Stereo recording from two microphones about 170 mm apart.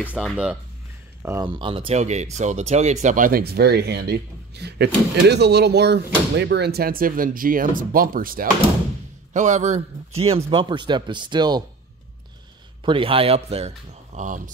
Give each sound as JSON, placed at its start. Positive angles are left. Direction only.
{"t": 0.2, "sound": "speech", "side_deg": -5}
{"t": 1.2, "sound": "a man's voice", "side_deg": -20}
{"t": 9.3, "sound": "a man's voice", "side_deg": -45}
{"t": 12.8, "sound": "speech", "side_deg": -30}